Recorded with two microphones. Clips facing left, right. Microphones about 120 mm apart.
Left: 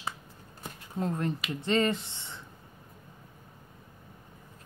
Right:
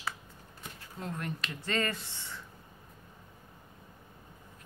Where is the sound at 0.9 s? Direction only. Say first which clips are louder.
Left 8 dB; 30° left (ahead or behind).